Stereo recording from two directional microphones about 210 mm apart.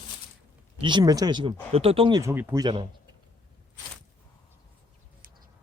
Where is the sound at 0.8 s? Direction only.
20° right (ahead or behind).